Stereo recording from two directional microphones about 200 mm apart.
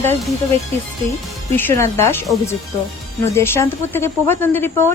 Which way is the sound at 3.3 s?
10° left (ahead or behind).